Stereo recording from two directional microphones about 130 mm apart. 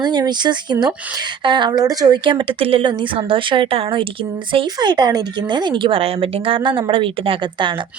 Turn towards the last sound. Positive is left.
turn(degrees=-40)  # may be behind; listen again after turning